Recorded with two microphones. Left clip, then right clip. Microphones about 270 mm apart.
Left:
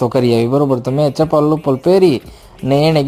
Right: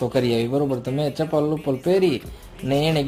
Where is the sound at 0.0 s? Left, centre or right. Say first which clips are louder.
Left 8 dB; left.